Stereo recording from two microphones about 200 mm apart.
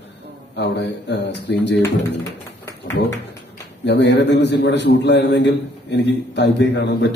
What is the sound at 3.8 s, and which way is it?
A man's voice, 60° left (ahead or behind).